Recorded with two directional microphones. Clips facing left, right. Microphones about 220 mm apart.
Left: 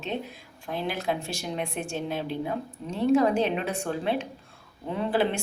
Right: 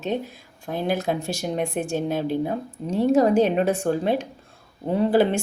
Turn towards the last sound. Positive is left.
turn(degrees=-40)  # may be behind; listen again after turning